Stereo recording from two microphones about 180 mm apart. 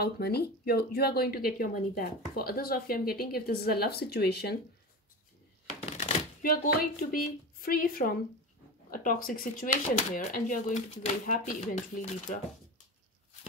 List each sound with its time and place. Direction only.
0.0 s speech: 60° left (ahead or behind)
5.8 s a sound: 35° left (ahead or behind)
6.4 s speech: 50° left (ahead or behind)